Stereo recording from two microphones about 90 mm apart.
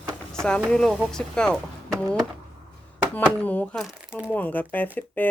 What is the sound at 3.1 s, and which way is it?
Speech, 20° left (ahead or behind).